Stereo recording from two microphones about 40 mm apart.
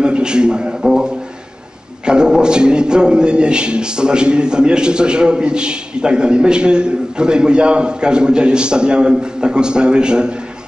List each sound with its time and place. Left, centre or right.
0.0 s a man's voice: right